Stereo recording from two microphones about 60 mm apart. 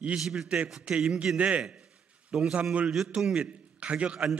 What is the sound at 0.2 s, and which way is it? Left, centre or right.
A man's voice, centre.